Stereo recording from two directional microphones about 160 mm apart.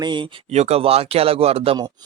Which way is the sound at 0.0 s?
30° right (ahead or behind).